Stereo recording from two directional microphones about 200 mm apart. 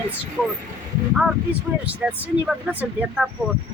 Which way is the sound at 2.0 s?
5° right (ahead or behind).